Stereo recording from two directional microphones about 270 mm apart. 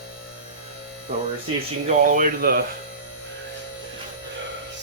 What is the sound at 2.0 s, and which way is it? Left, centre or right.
Speech, right.